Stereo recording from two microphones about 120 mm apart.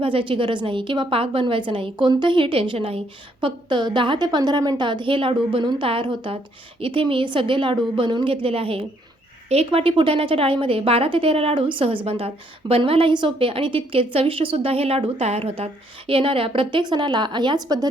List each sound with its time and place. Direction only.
0.0 s a woman's voice: 50° right (ahead or behind)